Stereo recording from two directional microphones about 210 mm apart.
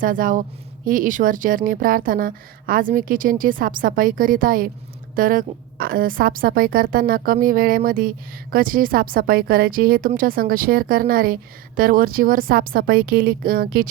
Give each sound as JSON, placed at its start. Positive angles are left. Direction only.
{"t": 0.0, "sound": "a woman's voice", "side_deg": -40}